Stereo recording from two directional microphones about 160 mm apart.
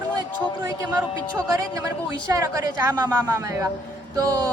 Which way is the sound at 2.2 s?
20° right (ahead or behind).